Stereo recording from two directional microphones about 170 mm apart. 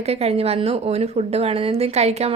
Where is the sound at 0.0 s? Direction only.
40° right (ahead or behind).